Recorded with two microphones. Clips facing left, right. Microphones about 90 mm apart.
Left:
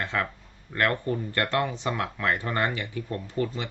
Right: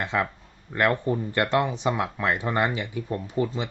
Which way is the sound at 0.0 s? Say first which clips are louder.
Right 3 dB; 20° right (ahead or behind).